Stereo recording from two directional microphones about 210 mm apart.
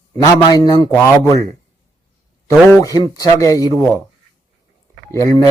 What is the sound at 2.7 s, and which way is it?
A man's voice, 15° left (ahead or behind).